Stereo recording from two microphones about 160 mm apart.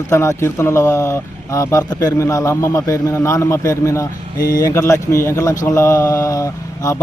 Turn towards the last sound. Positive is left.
turn(degrees=20)  # may be behind; listen again after turning